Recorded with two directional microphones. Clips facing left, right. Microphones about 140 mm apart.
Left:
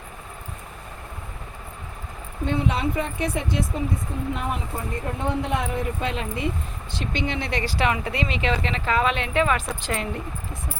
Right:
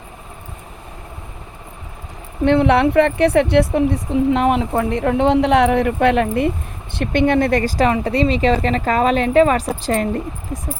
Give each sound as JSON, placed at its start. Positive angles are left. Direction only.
{"t": 2.4, "sound": "speech", "side_deg": -70}